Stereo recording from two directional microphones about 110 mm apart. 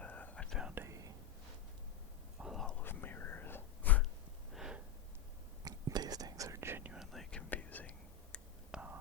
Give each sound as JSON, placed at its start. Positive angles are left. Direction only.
{"t": 0.0, "sound": "whispering", "side_deg": 15}
{"t": 0.6, "sound": "whispering", "side_deg": -20}
{"t": 2.4, "sound": "whispering", "side_deg": 0}
{"t": 2.8, "sound": "whispering", "side_deg": 20}
{"t": 4.5, "sound": "a sound", "side_deg": -5}
{"t": 5.6, "sound": "whispering", "side_deg": -35}
{"t": 6.9, "sound": "whispering", "side_deg": 0}
{"t": 8.7, "sound": "whispering", "side_deg": -10}